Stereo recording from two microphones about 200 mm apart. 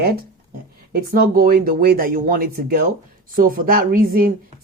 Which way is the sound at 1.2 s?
45° right (ahead or behind).